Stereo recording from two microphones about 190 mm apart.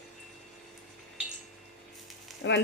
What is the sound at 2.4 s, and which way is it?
Speech, 70° left (ahead or behind).